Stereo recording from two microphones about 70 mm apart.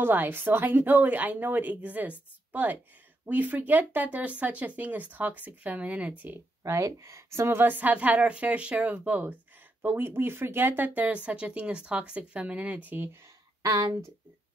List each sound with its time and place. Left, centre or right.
0.0 s speech: right
6.6 s speech: right
11.0 s speech: centre
13.6 s speech: right